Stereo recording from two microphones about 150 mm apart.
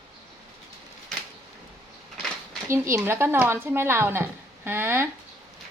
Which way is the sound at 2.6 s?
20° right (ahead or behind).